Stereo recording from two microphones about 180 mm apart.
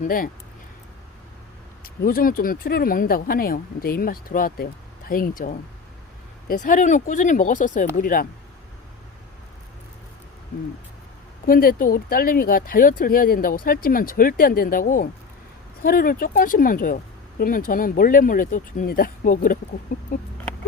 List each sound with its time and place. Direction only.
0.0 s speech: 50° left (ahead or behind)
1.8 s speech: 55° left (ahead or behind)
11.4 s speech: 55° left (ahead or behind)